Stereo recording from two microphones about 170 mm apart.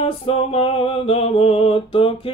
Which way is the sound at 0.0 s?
35° left (ahead or behind).